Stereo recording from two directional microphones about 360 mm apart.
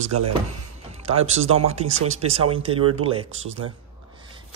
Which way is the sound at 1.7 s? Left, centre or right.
Centre.